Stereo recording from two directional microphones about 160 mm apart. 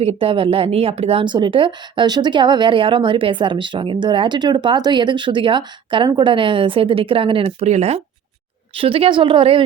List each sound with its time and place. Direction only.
0.0 s speech: 35° right (ahead or behind)